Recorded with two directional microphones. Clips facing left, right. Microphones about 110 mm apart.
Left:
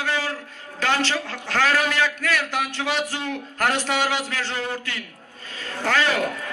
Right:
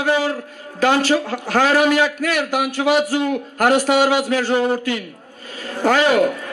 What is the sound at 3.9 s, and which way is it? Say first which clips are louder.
Speech: right 8 dB; 45° right (ahead or behind).